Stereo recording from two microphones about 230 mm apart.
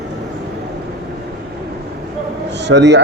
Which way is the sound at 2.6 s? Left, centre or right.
Right.